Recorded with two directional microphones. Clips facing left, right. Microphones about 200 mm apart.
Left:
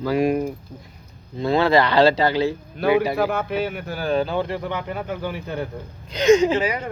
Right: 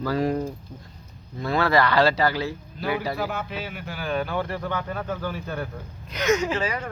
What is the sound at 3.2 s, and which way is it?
Speech, 55° left (ahead or behind).